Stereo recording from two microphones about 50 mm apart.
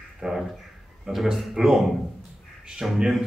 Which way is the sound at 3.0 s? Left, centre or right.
Centre.